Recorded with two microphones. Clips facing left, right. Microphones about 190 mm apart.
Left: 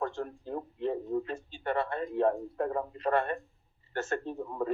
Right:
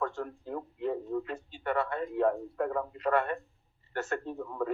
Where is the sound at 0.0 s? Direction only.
30° left (ahead or behind).